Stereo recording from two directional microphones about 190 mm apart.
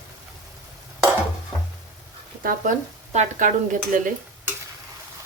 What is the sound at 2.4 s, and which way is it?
Speech, 45° right (ahead or behind).